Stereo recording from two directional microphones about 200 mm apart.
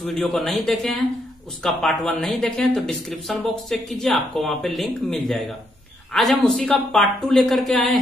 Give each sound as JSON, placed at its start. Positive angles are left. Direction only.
{"t": 0.0, "sound": "speech", "side_deg": 0}